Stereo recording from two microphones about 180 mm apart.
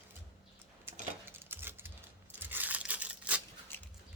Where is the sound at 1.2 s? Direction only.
10° right (ahead or behind).